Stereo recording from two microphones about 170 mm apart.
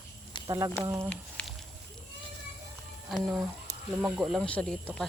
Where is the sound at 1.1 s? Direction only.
5° left (ahead or behind).